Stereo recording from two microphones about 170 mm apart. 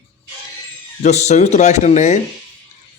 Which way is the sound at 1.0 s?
40° left (ahead or behind).